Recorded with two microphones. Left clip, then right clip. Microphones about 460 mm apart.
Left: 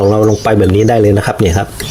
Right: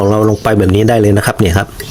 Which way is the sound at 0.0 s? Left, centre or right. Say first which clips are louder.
Left 1 dB; right.